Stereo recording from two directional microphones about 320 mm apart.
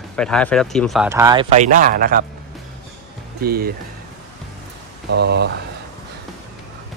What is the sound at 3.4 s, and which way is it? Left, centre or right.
Speech, right.